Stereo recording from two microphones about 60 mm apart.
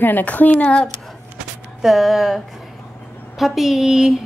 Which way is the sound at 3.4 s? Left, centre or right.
Centre.